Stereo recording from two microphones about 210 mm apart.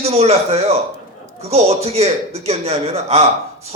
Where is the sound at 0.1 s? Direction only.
30° right (ahead or behind).